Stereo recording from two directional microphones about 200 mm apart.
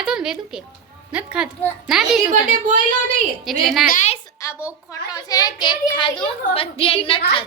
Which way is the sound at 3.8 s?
40° left (ahead or behind).